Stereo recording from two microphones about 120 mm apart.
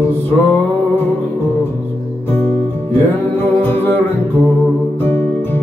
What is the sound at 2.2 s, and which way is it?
Music, 20° left (ahead or behind).